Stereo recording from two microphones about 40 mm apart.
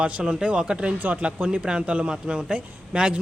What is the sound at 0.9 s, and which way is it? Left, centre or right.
Speech, right.